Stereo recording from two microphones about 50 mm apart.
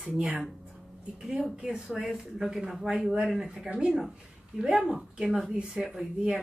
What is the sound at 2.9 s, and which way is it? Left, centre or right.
A man's voice, centre.